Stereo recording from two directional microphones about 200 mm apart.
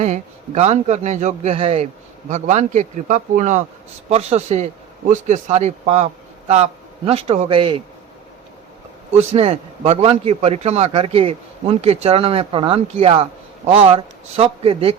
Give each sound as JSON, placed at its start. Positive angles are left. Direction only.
{"t": 0.0, "sound": "a man's voice", "side_deg": -35}
{"t": 9.1, "sound": "a man's voice", "side_deg": -30}